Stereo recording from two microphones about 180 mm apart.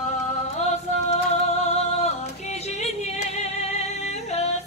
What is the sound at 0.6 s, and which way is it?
Music, 40° left (ahead or behind).